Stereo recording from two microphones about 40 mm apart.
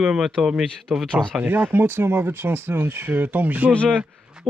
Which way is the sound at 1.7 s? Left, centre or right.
Right.